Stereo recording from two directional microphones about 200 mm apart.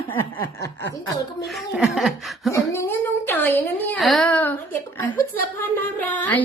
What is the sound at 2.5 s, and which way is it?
A woman's voice, 10° left (ahead or behind).